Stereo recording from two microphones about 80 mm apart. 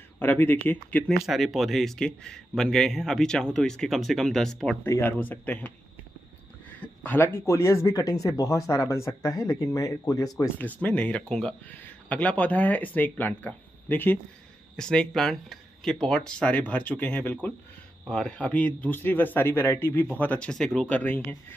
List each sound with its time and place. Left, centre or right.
0.2 s speech: left
0.8 s speech: centre
1.2 s speech: centre
5.0 s speech: left
6.8 s speech: left
7.9 s speech: left
10.6 s speech: centre
14.8 s speech: centre; by 20.1 s left
20.2 s speech: centre
21.0 s speech: left